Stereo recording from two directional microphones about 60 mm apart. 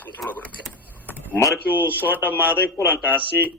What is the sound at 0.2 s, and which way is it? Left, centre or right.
Speech, centre.